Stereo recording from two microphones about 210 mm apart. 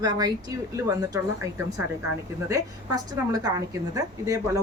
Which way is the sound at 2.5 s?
15° right (ahead or behind).